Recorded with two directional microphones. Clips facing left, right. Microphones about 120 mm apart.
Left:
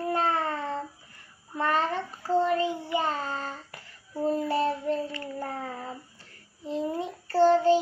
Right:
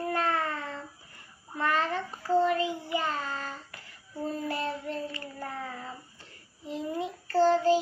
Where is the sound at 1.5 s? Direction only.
35° left (ahead or behind).